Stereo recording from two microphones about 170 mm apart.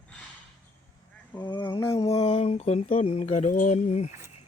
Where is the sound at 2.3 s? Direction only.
40° left (ahead or behind).